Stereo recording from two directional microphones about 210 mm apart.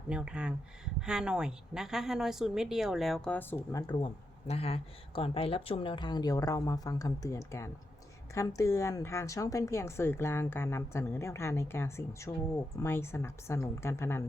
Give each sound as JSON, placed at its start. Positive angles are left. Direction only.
{"t": 0.1, "sound": "a woman's voice", "side_deg": -5}